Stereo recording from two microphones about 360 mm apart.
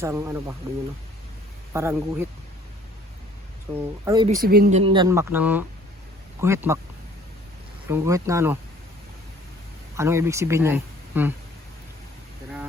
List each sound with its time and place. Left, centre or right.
0.0 s speech: centre
1.7 s speech: centre
3.8 s speech: centre
7.9 s speech: centre
9.9 s speech: centre